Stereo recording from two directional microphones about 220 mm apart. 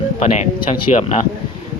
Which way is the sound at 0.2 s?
30° left (ahead or behind).